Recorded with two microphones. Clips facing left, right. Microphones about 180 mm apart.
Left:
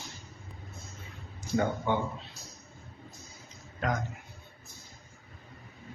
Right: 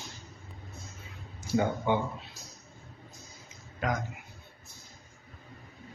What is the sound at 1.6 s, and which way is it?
Speech, 10° right (ahead or behind).